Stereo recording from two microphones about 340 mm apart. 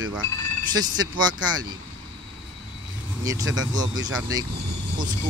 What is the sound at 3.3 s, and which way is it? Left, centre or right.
Speech, centre.